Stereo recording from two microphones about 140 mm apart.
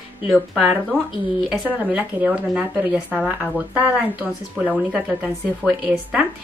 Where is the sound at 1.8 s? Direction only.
10° right (ahead or behind).